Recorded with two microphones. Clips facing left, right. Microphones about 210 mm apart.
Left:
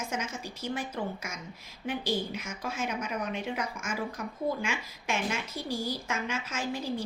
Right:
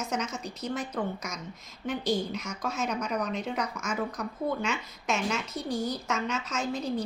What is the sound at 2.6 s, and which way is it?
Speech, 5° left (ahead or behind).